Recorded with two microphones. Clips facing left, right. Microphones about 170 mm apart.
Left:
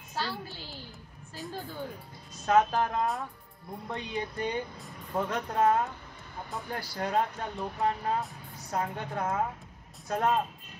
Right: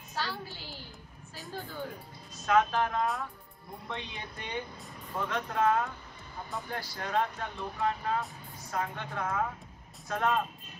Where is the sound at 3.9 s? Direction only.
40° left (ahead or behind).